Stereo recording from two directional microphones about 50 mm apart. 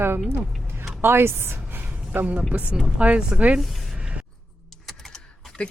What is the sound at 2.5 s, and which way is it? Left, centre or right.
Speech, right.